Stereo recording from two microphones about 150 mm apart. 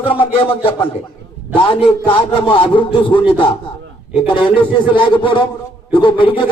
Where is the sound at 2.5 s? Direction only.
35° left (ahead or behind).